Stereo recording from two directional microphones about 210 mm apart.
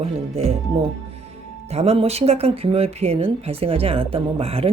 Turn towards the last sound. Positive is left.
turn(degrees=-30)  # may be behind; listen again after turning